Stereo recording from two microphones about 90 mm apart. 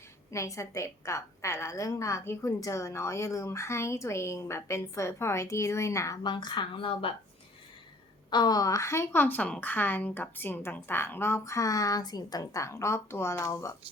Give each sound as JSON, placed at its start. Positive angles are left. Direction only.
{"t": 0.3, "sound": "a woman's voice", "side_deg": 35}
{"t": 6.2, "sound": "speech", "side_deg": 60}
{"t": 8.3, "sound": "a woman's voice", "side_deg": 50}